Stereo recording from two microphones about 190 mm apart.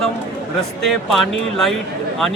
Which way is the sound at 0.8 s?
Centre (ahead or behind).